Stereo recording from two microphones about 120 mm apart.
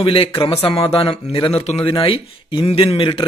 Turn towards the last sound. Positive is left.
turn(degrees=45)  # may be behind; listen again after turning